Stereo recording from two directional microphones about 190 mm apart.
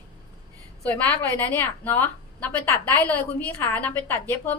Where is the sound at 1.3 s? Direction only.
10° left (ahead or behind).